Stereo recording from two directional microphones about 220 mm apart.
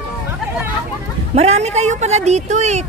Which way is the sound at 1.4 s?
30° right (ahead or behind).